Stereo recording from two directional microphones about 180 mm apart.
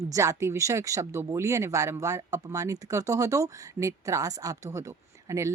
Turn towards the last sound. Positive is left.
turn(degrees=-15)  # may be behind; listen again after turning